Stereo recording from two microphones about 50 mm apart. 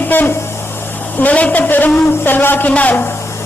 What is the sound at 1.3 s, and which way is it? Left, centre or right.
A man's voice, left.